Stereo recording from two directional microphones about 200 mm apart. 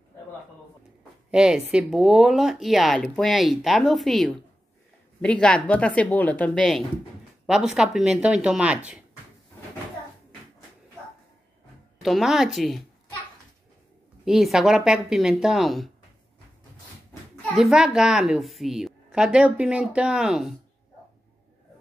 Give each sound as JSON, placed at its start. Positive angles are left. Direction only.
{"t": 1.3, "sound": "a woman's voice", "side_deg": -5}
{"t": 12.0, "sound": "speech", "side_deg": 0}
{"t": 14.2, "sound": "speech", "side_deg": 0}
{"t": 17.6, "sound": "speech", "side_deg": 0}